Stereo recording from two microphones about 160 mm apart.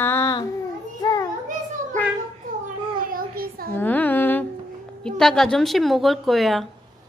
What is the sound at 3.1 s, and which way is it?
Speech, 65° right (ahead or behind).